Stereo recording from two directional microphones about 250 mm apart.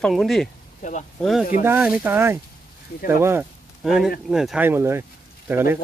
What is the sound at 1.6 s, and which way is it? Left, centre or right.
Speech, centre.